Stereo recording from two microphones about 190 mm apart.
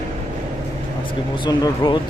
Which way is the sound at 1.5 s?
20° left (ahead or behind).